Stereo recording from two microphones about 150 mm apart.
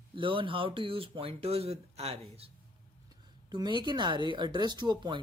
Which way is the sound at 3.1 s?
30° right (ahead or behind).